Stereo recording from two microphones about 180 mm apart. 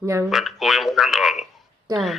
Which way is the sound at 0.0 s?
15° right (ahead or behind).